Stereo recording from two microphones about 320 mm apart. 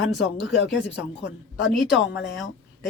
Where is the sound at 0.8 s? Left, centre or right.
Left.